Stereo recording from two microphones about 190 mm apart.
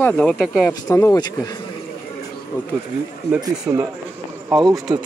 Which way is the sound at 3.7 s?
15° right (ahead or behind).